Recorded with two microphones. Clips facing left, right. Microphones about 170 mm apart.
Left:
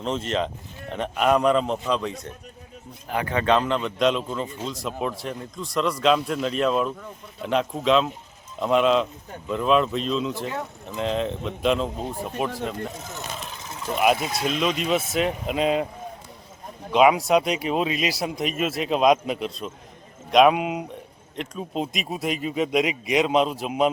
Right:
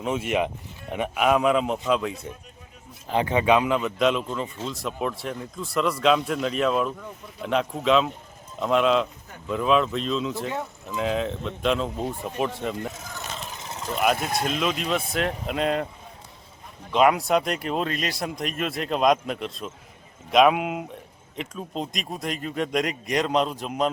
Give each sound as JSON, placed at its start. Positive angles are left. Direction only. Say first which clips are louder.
{"t": 0.0, "sound": "a man's voice", "louder": "right 1 dB", "side_deg": -10}
{"t": 3.1, "sound": "a man's voice", "louder": "right 1 dB", "side_deg": -20}
{"t": 14.2, "sound": "speech", "louder": "right 1 dB", "side_deg": -50}
{"t": 14.4, "sound": "speech", "louder": "left 4 dB", "side_deg": 0}
{"t": 16.9, "sound": "speech", "louder": "left 2 dB", "side_deg": 0}